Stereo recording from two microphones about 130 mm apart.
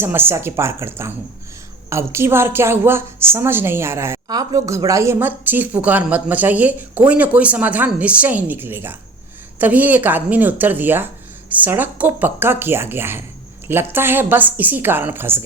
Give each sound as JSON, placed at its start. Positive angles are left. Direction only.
{"t": 0.0, "sound": "a woman's voice", "side_deg": -15}